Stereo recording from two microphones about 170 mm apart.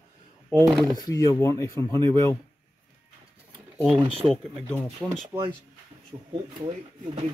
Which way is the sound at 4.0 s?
30° right (ahead or behind).